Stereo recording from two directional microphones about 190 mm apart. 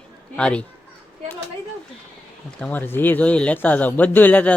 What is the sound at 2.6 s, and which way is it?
A man's voice, 10° left (ahead or behind).